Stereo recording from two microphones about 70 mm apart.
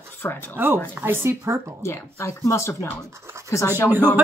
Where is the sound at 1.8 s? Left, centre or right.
Left.